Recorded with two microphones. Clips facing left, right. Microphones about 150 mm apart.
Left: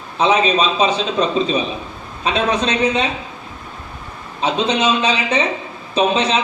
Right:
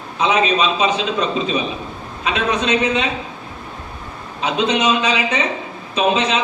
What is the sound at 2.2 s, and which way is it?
Speech, 35° left (ahead or behind).